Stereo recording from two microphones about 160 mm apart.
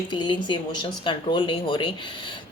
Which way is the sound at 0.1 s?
30° left (ahead or behind).